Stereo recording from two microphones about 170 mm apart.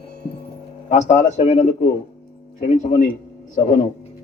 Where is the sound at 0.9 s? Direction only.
40° left (ahead or behind).